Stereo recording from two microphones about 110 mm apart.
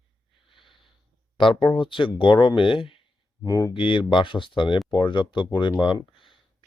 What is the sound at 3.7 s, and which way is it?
Speech, 50° left (ahead or behind).